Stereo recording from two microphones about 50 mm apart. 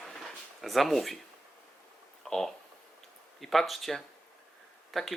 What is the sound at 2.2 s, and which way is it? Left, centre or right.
A man's voice, centre.